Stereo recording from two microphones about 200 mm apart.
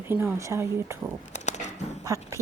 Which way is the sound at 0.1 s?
10° right (ahead or behind).